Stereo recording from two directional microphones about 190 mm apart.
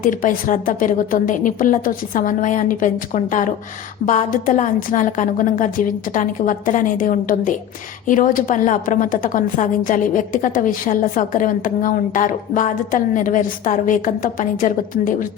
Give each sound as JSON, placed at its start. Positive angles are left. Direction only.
{"t": 0.0, "sound": "a woman's voice", "side_deg": 45}